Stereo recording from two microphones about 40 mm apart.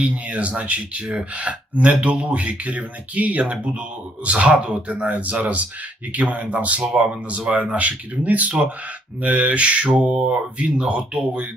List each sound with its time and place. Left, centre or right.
0.0 s speech: right
6.9 s speech: right
9.2 s speech: right